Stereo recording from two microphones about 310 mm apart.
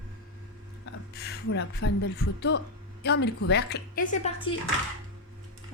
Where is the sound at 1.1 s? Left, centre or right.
Left.